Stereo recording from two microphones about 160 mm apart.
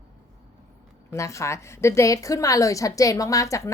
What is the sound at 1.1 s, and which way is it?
A woman's voice, 20° left (ahead or behind).